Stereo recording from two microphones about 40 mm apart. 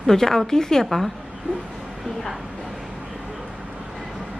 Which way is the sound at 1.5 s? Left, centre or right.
Left.